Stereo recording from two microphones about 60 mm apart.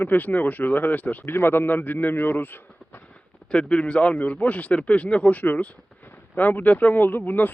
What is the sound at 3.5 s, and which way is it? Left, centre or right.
A man's voice, centre.